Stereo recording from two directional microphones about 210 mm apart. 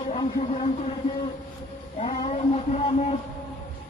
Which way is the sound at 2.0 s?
30° left (ahead or behind).